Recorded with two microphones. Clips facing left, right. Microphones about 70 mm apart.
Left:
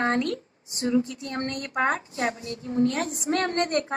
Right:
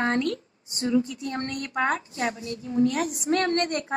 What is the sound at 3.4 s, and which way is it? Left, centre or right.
Speech, left.